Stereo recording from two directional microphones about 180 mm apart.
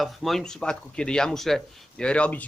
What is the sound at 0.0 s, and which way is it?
Speech, centre (ahead or behind).